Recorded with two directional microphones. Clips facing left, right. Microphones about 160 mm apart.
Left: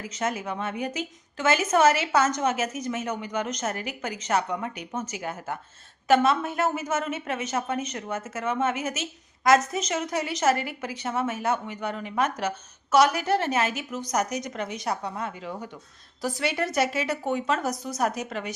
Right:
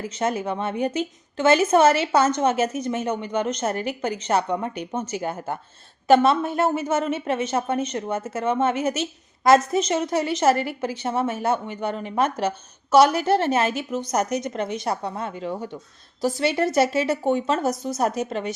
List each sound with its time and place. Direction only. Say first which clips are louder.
0.0 s a woman's voice: right 5 dB; 30° right (ahead or behind)